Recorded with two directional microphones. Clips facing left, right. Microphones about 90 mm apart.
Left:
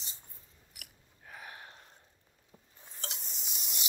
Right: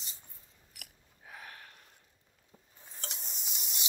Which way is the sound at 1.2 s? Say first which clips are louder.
Left 1 dB; centre (ahead or behind).